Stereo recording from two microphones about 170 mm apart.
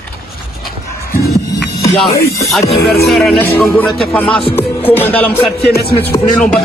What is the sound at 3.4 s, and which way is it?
A man's voice, 10° left (ahead or behind).